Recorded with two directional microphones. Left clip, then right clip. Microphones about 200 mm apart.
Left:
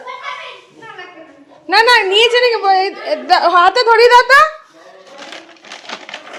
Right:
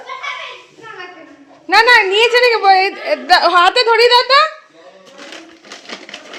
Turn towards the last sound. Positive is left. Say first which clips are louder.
# left 3 dB
turn(degrees=25)  # may be behind; listen again after turning